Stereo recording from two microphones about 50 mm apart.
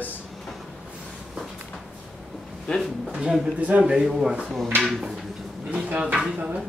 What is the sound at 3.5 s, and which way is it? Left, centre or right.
Speech, right.